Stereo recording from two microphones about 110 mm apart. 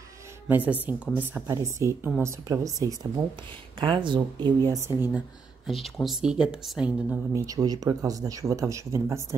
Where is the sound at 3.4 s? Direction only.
50° right (ahead or behind).